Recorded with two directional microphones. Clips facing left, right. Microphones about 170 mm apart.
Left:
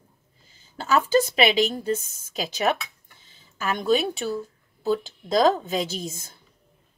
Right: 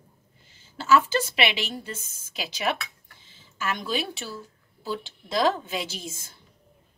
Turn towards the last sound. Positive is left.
turn(degrees=40)  # may be behind; listen again after turning